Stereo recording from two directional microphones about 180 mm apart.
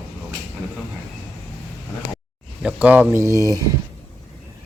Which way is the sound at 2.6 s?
5° right (ahead or behind).